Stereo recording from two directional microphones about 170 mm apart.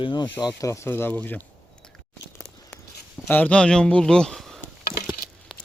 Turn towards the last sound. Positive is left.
turn(degrees=0)  # may be behind; listen again after turning